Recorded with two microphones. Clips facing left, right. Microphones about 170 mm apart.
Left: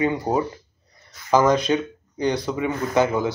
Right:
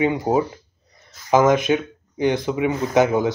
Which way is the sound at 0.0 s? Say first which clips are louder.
Right 2 dB; 15° right (ahead or behind).